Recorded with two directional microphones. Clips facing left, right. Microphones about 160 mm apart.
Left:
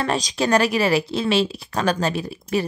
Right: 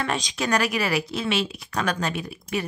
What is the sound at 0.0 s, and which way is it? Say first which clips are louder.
Speech: left 5 dB; 35° left (ahead or behind).